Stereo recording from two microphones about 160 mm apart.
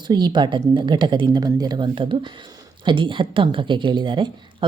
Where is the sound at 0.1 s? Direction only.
30° right (ahead or behind).